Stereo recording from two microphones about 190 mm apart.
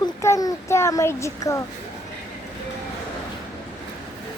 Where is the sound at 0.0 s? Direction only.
15° left (ahead or behind).